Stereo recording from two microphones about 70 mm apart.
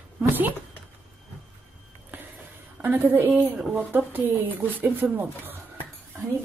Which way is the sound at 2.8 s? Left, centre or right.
Right.